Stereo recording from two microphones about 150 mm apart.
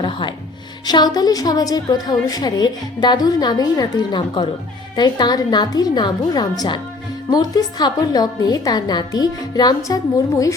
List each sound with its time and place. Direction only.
0.0 s music: 35° left (ahead or behind)
0.9 s a woman's voice: 25° left (ahead or behind)